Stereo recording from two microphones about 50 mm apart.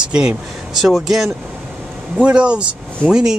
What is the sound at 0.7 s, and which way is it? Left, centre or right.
Speech, centre.